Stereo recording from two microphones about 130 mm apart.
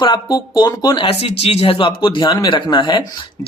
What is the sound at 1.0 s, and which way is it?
A man's voice, 50° left (ahead or behind).